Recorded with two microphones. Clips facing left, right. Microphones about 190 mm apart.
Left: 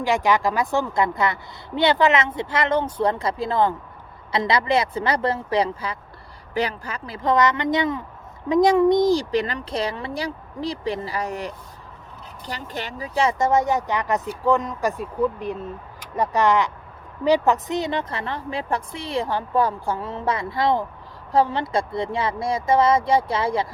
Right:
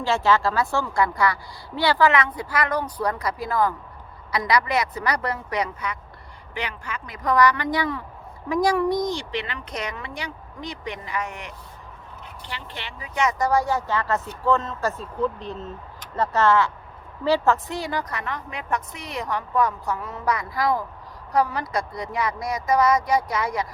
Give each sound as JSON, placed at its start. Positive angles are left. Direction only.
{"t": 0.0, "sound": "a woman's voice", "side_deg": 15}
{"t": 9.0, "sound": "a woman's voice", "side_deg": 40}